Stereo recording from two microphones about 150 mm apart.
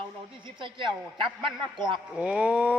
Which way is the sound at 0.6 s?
35° right (ahead or behind).